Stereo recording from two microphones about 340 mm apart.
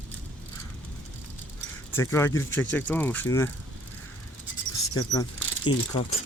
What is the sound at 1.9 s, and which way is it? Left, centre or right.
Speech, centre.